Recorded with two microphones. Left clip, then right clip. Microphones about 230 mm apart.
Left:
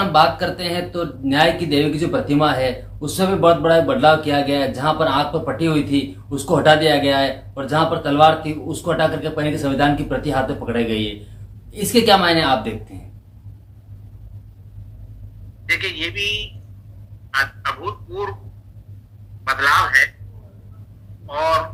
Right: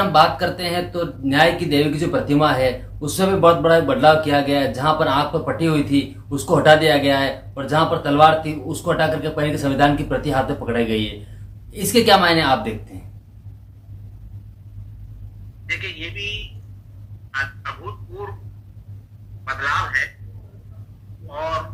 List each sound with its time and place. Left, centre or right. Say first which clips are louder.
0.1 s speech: left 2 dB; centre
15.6 s a man's voice: left 6 dB; left
19.5 s speech: left 6 dB; left
21.2 s honk: left 7 dB; left